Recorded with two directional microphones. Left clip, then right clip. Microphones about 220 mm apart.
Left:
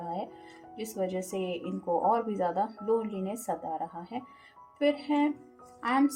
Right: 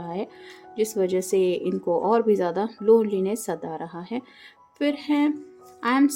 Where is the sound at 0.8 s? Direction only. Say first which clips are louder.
Right 10 dB; 45° right (ahead or behind).